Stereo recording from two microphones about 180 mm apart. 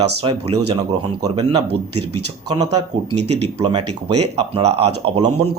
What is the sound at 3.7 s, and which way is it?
Speech, 35° right (ahead or behind).